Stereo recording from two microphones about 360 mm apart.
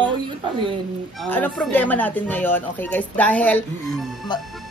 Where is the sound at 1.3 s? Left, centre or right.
Centre.